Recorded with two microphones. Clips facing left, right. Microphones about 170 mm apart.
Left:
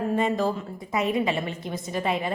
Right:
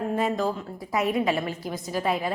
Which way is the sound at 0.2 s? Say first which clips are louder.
Left 1 dB; centre (ahead or behind).